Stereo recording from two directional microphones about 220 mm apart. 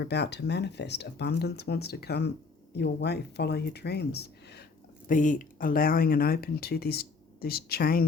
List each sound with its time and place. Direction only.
0.0 s speech: 50° left (ahead or behind)
5.0 s speech: 35° left (ahead or behind)